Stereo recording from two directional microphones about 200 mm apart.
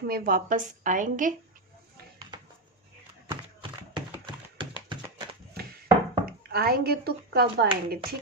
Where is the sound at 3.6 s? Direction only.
25° right (ahead or behind).